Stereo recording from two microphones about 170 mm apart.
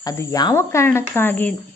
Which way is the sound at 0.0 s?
15° left (ahead or behind).